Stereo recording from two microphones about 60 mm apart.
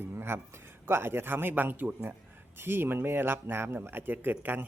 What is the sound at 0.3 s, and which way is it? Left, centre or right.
Speech, right.